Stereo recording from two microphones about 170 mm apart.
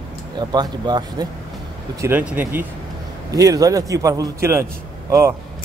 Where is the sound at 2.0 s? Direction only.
10° right (ahead or behind).